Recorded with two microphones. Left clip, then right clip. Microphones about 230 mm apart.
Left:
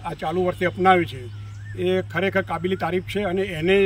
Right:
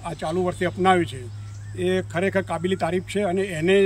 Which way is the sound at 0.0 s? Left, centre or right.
Centre.